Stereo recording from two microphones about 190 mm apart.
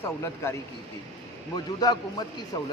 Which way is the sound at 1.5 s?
20° left (ahead or behind).